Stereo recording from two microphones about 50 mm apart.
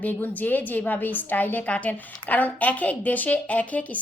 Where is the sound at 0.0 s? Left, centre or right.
Left.